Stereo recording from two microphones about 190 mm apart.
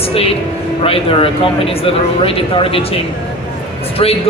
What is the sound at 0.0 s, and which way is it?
Speech, 30° left (ahead or behind).